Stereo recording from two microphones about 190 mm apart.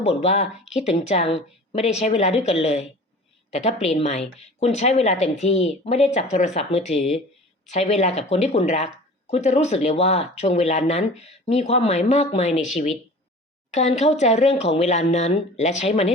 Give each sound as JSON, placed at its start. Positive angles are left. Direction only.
{"t": 0.0, "sound": "speech", "side_deg": 35}